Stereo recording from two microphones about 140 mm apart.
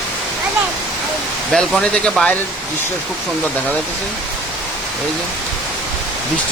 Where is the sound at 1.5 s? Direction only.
5° left (ahead or behind).